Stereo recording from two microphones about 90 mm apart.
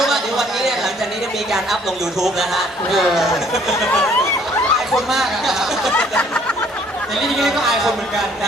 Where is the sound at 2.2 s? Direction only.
5° right (ahead or behind).